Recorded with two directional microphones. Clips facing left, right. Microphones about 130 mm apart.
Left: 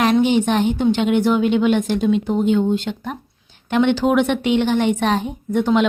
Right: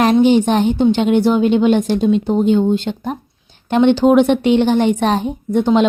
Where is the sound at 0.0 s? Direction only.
35° right (ahead or behind).